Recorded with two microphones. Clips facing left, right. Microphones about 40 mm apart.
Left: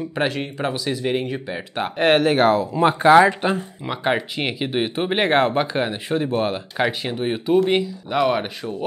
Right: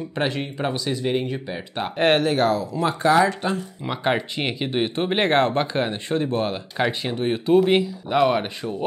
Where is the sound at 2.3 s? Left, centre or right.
Left.